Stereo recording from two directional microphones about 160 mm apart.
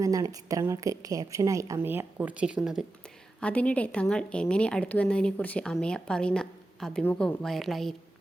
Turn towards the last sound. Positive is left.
turn(degrees=0)  # may be behind; listen again after turning